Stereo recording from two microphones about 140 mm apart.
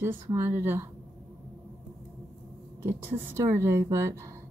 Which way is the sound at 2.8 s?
20° right (ahead or behind).